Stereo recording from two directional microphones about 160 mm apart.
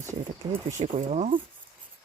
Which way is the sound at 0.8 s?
45° right (ahead or behind).